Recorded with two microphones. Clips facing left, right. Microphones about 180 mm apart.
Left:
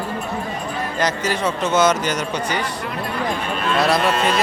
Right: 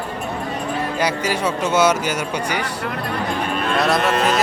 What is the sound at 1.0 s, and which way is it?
Speech, 10° right (ahead or behind).